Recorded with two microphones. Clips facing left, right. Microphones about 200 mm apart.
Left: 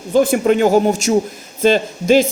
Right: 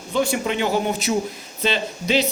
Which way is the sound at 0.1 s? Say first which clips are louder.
Left 9 dB; 50° left (ahead or behind).